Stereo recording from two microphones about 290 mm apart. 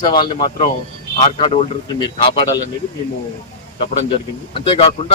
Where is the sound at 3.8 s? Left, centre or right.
Centre.